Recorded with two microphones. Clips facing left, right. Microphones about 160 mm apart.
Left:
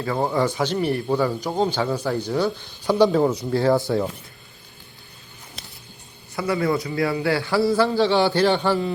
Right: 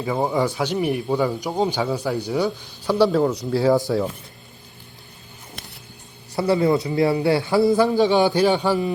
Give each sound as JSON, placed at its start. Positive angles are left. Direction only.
{"t": 0.0, "sound": "a man's voice", "side_deg": -10}
{"t": 2.8, "sound": "speech", "side_deg": 0}
{"t": 6.3, "sound": "a man's voice", "side_deg": -30}